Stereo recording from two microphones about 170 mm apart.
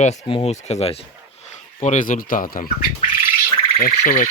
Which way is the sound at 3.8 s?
50° left (ahead or behind).